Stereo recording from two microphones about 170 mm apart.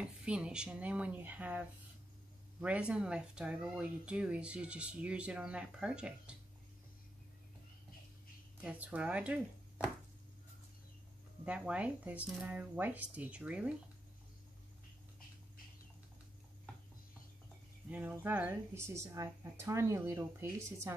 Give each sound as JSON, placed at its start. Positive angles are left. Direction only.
{"t": 0.0, "sound": "speech", "side_deg": -5}
{"t": 8.5, "sound": "speech", "side_deg": -10}
{"t": 11.4, "sound": "speech", "side_deg": -5}
{"t": 17.8, "sound": "speech", "side_deg": -10}